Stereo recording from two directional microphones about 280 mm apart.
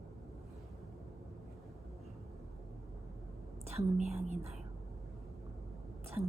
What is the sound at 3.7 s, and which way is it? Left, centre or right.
Speech, right.